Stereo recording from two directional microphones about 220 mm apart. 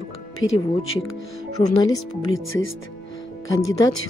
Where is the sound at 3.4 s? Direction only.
15° left (ahead or behind).